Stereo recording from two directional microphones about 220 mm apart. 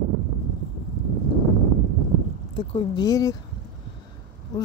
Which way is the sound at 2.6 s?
20° left (ahead or behind).